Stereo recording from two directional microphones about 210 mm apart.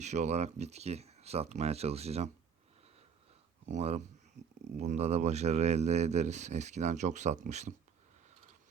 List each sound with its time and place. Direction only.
0.0 s speech: 35° right (ahead or behind)
3.7 s speech: 30° right (ahead or behind)